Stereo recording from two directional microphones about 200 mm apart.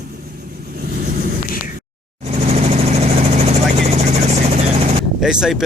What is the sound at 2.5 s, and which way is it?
Vehicle, 30° right (ahead or behind).